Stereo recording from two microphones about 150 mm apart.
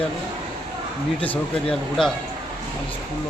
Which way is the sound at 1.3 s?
5° left (ahead or behind).